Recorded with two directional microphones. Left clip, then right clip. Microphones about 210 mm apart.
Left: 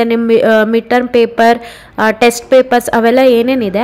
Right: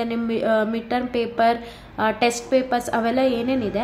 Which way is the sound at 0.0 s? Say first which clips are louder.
Left 14 dB; 40° left (ahead or behind).